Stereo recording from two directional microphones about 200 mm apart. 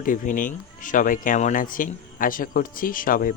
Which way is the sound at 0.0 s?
40° left (ahead or behind).